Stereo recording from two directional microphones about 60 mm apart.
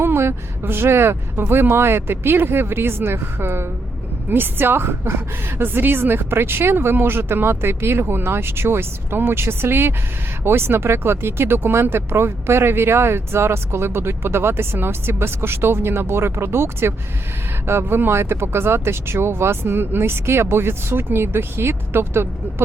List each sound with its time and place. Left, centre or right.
0.0 s a woman's voice: right